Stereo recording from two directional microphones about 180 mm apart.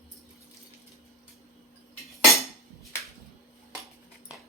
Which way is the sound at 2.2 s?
Centre (ahead or behind).